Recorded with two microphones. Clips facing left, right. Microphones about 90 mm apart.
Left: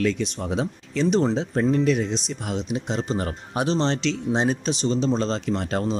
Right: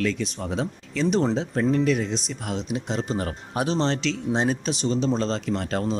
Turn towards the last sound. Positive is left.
turn(degrees=5)  # may be behind; listen again after turning